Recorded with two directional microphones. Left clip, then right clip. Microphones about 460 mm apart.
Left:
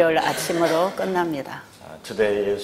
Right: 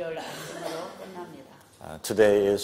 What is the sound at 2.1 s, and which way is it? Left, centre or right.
Speech, right.